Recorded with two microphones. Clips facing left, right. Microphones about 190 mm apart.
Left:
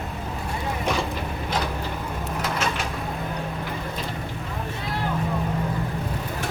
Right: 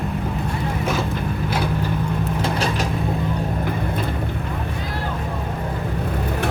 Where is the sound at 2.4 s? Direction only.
35° right (ahead or behind).